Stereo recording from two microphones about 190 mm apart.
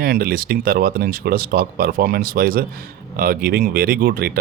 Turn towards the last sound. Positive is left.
turn(degrees=-50)  # may be behind; listen again after turning